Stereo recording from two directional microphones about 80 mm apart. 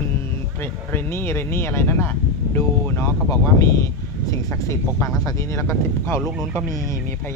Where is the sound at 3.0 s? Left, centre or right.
Left.